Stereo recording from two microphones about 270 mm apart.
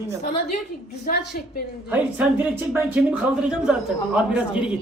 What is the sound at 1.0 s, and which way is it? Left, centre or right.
Speech, left.